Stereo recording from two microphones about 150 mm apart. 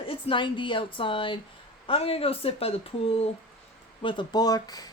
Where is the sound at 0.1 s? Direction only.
35° left (ahead or behind).